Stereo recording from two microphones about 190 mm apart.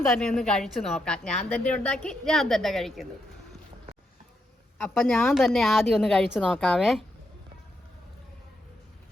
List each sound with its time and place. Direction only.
0.2 s speech: 5° left (ahead or behind)
4.8 s speech: centre (ahead or behind)